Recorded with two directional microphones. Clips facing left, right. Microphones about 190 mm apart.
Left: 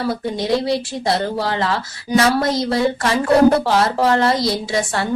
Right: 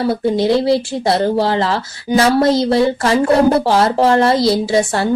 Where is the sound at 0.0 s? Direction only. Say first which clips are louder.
Right 6 dB; 30° right (ahead or behind).